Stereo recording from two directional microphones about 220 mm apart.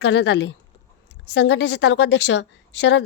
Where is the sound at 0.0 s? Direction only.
50° left (ahead or behind).